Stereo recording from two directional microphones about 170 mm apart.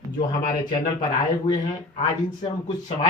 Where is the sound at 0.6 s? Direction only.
25° left (ahead or behind).